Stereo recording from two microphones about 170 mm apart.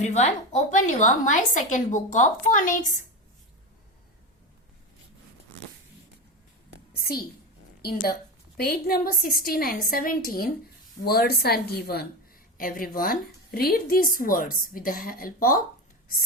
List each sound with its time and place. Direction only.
0.0 s a woman's voice: 40° left (ahead or behind)
6.9 s a sound: 60° left (ahead or behind)
8.5 s a woman's voice: 65° left (ahead or behind)